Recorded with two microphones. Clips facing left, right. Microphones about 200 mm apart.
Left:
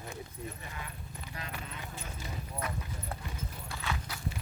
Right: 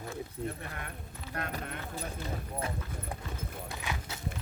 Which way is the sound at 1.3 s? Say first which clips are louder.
Right 7 dB; 60° right (ahead or behind).